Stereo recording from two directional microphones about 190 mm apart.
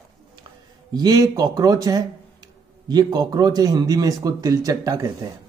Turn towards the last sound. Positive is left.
turn(degrees=-20)  # may be behind; listen again after turning